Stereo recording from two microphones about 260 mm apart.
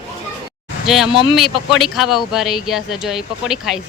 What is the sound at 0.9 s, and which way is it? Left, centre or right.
Speech, centre.